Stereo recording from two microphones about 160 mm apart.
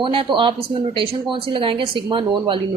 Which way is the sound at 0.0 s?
35° right (ahead or behind).